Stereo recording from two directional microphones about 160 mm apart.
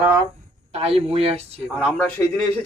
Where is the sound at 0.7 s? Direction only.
40° right (ahead or behind).